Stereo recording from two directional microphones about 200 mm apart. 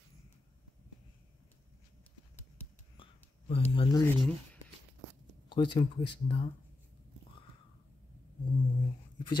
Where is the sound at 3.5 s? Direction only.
30° left (ahead or behind).